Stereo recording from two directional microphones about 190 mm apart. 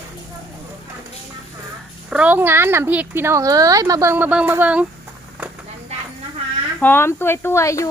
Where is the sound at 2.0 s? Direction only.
5° right (ahead or behind).